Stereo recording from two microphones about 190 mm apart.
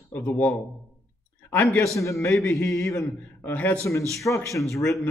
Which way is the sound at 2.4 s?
15° left (ahead or behind).